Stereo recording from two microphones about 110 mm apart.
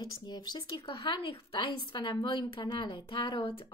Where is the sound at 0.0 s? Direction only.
40° left (ahead or behind).